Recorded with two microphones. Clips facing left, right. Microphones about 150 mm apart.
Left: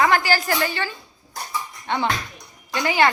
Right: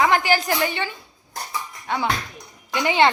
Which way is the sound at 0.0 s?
20° right (ahead or behind).